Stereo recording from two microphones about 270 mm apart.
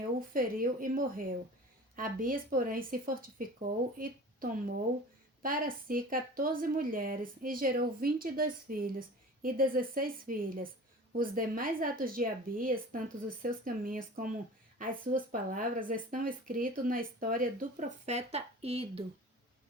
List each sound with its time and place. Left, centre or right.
0.2 s a woman's voice: right